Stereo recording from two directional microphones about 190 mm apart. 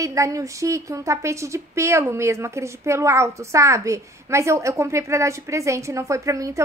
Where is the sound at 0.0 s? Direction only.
15° right (ahead or behind).